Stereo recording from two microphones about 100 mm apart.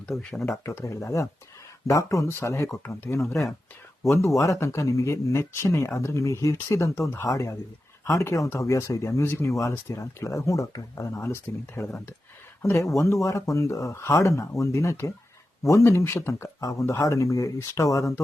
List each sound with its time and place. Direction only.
0.1 s speech: centre (ahead or behind)
0.4 s speech: 30° left (ahead or behind)
4.4 s speech: 30° left (ahead or behind)